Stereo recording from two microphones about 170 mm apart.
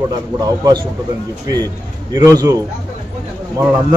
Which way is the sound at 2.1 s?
20° right (ahead or behind).